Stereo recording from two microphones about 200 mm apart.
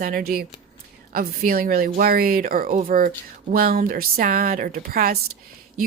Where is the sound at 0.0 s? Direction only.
45° right (ahead or behind).